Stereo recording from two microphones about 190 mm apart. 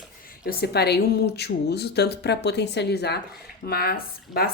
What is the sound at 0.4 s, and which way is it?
A woman's voice, 55° left (ahead or behind).